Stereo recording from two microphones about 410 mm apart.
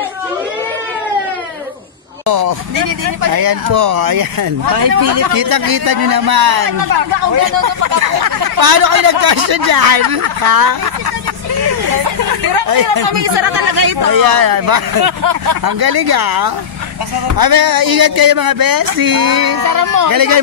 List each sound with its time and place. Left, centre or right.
2.2 s a sound: right
3.3 s speech: right
12.6 s speech: right
14.0 s speech: right